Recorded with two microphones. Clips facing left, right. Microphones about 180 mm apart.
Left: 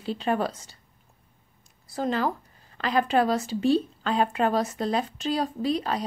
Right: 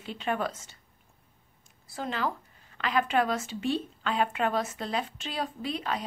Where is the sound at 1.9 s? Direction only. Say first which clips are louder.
Left 6 dB; 40° left (ahead or behind).